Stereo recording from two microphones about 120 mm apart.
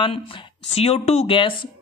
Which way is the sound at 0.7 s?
60° left (ahead or behind).